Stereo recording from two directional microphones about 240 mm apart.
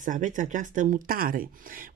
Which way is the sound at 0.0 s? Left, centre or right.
Right.